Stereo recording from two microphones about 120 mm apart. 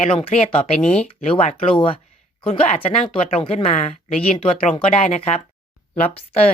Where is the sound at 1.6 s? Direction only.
50° left (ahead or behind).